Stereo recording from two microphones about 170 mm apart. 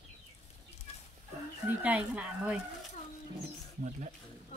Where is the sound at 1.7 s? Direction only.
5° right (ahead or behind).